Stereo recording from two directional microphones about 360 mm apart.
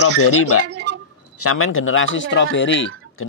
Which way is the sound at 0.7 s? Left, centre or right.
Right.